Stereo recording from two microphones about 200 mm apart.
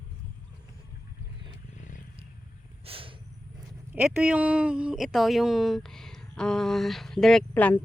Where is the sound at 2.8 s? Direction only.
25° right (ahead or behind).